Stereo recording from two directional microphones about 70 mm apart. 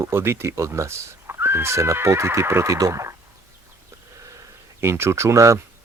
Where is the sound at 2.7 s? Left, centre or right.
Right.